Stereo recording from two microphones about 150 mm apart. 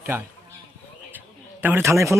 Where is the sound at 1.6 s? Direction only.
15° right (ahead or behind).